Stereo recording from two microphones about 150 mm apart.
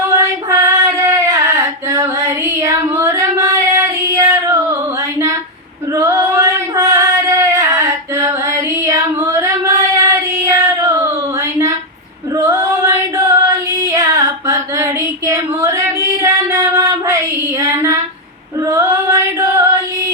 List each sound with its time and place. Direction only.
0.2 s female singing: 20° right (ahead or behind)
5.9 s female singing: 20° right (ahead or behind)
11.5 s a sound: 20° right (ahead or behind)
12.4 s female singing: 15° right (ahead or behind)
15.3 s a sound: 20° right (ahead or behind)
18.6 s singing: 20° right (ahead or behind)